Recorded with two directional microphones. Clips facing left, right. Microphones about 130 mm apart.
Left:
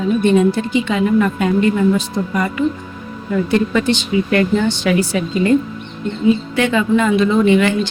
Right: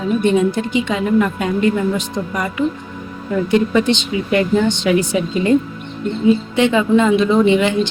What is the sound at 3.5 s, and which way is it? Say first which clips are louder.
Speech: right 2 dB; 15° right (ahead or behind).